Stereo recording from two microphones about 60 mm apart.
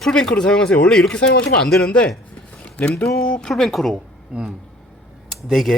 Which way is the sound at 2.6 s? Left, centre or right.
Left.